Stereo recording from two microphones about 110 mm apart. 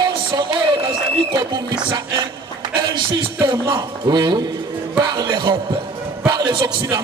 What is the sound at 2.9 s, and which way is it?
A man's voice, 45° right (ahead or behind).